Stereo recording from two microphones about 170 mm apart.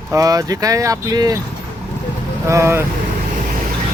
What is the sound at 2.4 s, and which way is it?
Speech, 15° right (ahead or behind).